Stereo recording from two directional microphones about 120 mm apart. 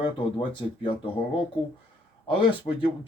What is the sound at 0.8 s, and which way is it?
Speech, 45° left (ahead or behind).